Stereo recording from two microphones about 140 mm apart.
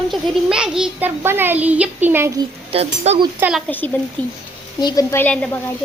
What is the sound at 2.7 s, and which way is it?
Speech, 50° right (ahead or behind).